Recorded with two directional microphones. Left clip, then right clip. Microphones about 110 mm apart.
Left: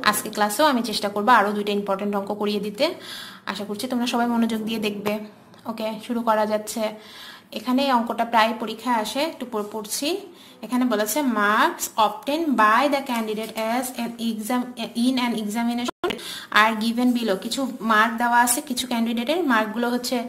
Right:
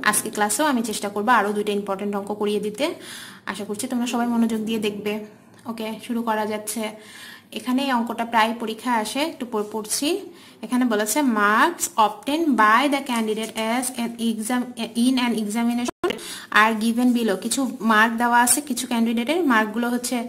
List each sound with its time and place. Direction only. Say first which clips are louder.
0.0 s a woman's voice: even; 25° right (ahead or behind)
1.1 s a woman's voice: left 1 dB; 15° right (ahead or behind)
15.6 s a woman's voice: even; 35° right (ahead or behind)
16.1 s a woman's voice: right 1 dB; 25° right (ahead or behind)